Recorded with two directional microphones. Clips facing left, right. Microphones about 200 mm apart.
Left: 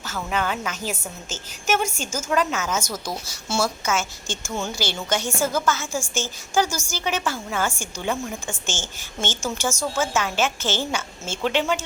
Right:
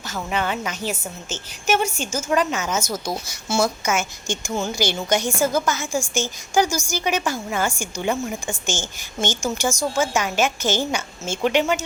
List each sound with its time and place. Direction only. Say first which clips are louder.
0.0 s a woman's voice: right 1 dB; 10° right (ahead or behind)